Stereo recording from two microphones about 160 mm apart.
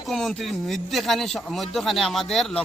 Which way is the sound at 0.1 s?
Centre (ahead or behind).